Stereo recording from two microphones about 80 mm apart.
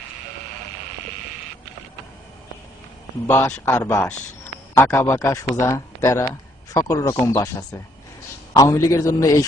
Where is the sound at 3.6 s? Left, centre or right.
Left.